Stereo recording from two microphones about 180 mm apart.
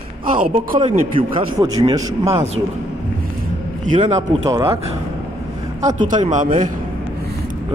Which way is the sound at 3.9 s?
40° right (ahead or behind).